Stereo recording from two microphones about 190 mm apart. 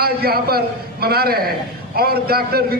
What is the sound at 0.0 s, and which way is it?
A man's voice, 55° right (ahead or behind).